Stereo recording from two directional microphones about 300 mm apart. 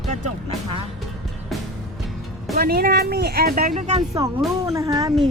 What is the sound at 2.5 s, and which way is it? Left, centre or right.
Speech, right.